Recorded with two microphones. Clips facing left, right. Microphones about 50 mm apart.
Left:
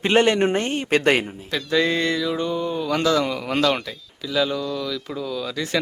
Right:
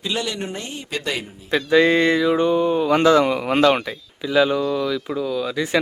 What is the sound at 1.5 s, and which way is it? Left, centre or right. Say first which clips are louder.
Speech: right 7 dB; right.